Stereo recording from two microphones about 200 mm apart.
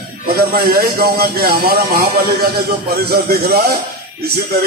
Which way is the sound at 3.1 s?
50° right (ahead or behind).